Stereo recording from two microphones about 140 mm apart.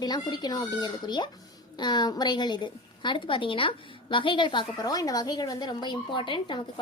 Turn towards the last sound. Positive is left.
turn(degrees=35)  # may be behind; listen again after turning